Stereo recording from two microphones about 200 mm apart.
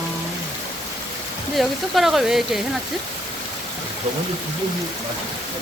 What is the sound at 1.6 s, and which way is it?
Speech, centre (ahead or behind).